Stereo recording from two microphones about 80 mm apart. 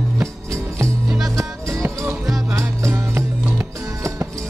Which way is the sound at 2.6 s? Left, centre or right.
Right.